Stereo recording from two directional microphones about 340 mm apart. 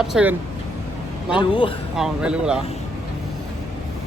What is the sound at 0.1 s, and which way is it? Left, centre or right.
Speech, centre.